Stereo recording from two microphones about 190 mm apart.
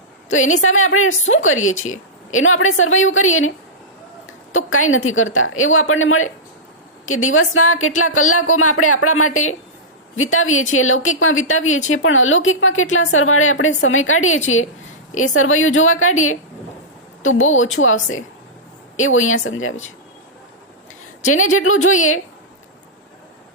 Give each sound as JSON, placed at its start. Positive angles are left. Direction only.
{"t": 0.3, "sound": "a woman's voice", "side_deg": 90}
{"t": 21.5, "sound": "a woman's voice", "side_deg": 90}